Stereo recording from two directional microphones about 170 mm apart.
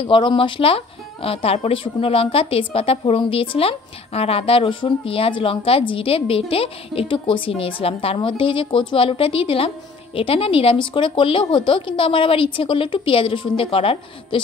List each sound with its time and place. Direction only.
0.0 s speech: 30° left (ahead or behind)